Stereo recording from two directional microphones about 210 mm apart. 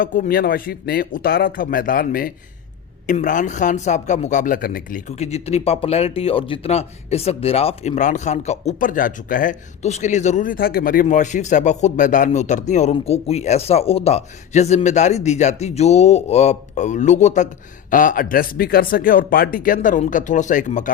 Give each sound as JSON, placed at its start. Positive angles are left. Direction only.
{"t": 0.0, "sound": "speech", "side_deg": 40}